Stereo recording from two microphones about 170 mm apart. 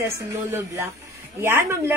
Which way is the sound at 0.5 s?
15° right (ahead or behind).